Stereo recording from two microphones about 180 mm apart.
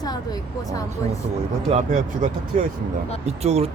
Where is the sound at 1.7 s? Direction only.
45° right (ahead or behind).